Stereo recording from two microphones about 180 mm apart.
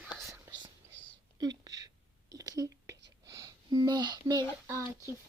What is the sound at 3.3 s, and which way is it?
Speech, 20° right (ahead or behind).